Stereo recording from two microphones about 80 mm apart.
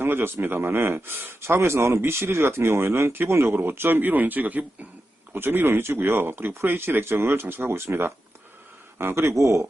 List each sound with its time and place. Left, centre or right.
0.0 s a man's voice: right